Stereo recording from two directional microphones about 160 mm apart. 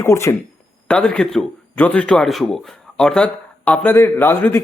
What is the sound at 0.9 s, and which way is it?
Speech, 5° left (ahead or behind).